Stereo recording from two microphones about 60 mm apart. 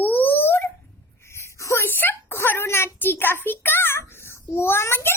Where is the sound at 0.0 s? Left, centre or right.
Left.